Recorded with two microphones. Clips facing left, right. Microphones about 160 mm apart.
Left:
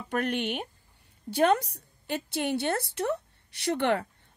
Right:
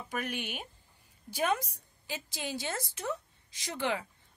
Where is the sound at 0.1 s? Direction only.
65° left (ahead or behind).